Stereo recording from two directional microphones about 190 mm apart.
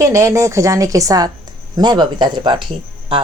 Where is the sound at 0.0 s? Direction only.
15° right (ahead or behind).